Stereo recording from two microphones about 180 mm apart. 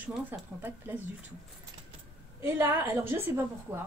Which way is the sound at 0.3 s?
10° right (ahead or behind).